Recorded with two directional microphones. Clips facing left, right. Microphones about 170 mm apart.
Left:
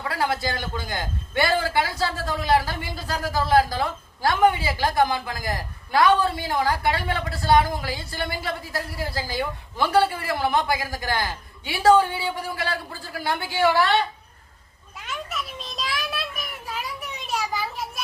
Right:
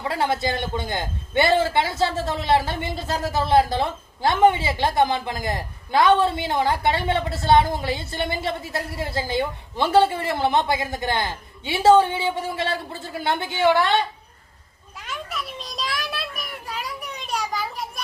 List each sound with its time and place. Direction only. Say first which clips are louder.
0.0 s a man's voice: right 2 dB; 25° right (ahead or behind)
14.9 s children playing: even; centre (ahead or behind)